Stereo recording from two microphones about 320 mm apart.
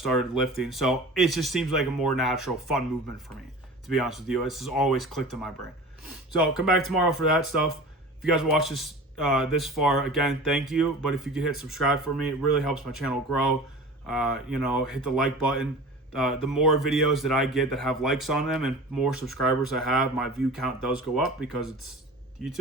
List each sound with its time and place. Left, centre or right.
0.0 s speech: centre
3.8 s speech: centre
6.3 s speech: centre